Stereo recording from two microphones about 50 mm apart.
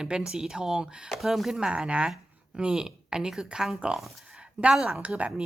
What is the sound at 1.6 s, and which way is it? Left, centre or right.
A woman's voice, centre.